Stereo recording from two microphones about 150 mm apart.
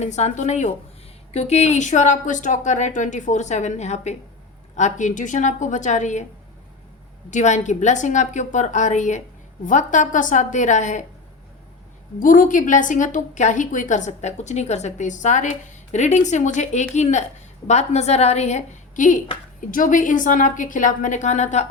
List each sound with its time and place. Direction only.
0.0 s a woman's voice: 50° left (ahead or behind)
7.3 s a woman's voice: 55° left (ahead or behind)
12.2 s a woman's voice: 60° left (ahead or behind)